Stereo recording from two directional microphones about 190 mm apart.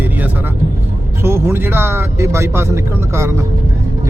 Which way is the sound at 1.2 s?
10° right (ahead or behind).